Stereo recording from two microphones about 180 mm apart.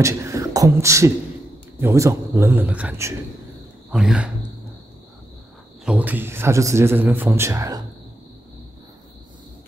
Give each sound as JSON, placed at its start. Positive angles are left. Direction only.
{"t": 0.0, "sound": "a man's voice", "side_deg": -15}
{"t": 5.9, "sound": "a man's voice", "side_deg": -10}